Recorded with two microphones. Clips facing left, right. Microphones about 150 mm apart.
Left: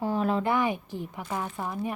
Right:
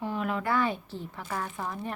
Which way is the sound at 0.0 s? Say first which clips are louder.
Left 4 dB; 35° left (ahead or behind).